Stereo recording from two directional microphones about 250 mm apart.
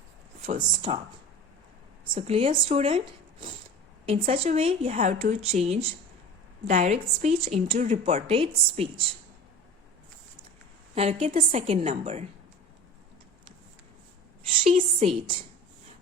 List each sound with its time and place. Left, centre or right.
0.4 s a woman's voice: right
2.1 s a woman's voice: right
10.9 s a woman's voice: right
14.4 s a woman's voice: right